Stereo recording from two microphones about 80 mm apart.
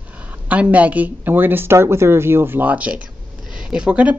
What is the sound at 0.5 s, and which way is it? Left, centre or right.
Speech, centre.